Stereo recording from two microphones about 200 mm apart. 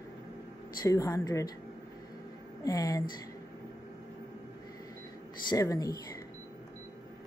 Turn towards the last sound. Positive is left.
turn(degrees=15)  # may be behind; listen again after turning